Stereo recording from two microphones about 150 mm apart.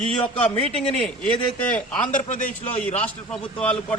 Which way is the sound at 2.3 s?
60° left (ahead or behind).